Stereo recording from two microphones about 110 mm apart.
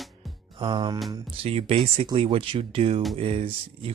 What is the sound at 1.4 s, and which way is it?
Speech, 65° right (ahead or behind).